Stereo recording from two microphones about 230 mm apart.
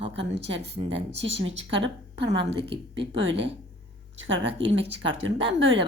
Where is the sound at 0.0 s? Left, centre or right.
Right.